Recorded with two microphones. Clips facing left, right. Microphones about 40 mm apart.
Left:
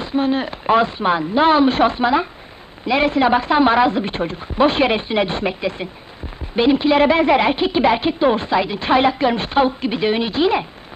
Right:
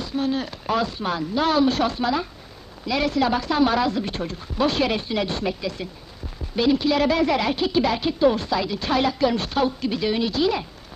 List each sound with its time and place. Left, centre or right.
0.0 s speech: left